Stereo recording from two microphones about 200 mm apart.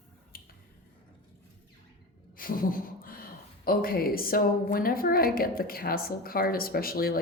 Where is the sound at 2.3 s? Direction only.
45° left (ahead or behind).